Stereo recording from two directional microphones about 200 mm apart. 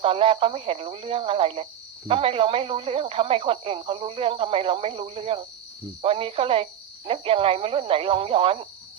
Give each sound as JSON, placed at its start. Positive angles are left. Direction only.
{"t": 0.0, "sound": "speech", "side_deg": -25}